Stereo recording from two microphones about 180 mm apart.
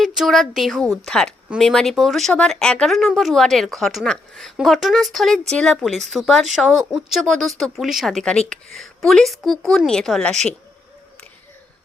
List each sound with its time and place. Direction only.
0.0 s speech: centre (ahead or behind)